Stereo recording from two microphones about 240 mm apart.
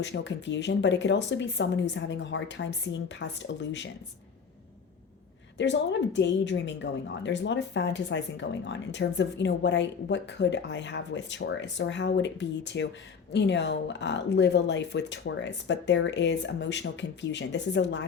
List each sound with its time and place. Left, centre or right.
0.0 s a woman's voice: left
5.5 s a woman's voice: left